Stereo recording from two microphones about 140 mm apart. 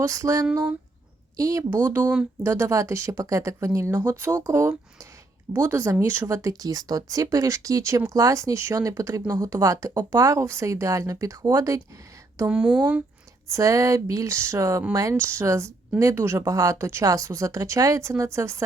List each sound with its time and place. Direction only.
0.0 s speech: 20° right (ahead or behind)
12.5 s speech: 5° right (ahead or behind)
13.5 s speech: 25° right (ahead or behind)